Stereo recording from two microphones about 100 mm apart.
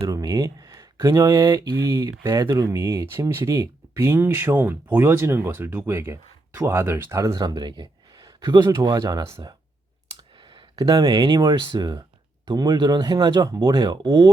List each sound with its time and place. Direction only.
0.1 s speech: 40° right (ahead or behind)
3.1 s speech: 25° right (ahead or behind)
7.3 s speech: 45° right (ahead or behind)
10.3 s a sound: 60° right (ahead or behind)
10.8 s speech: 45° right (ahead or behind)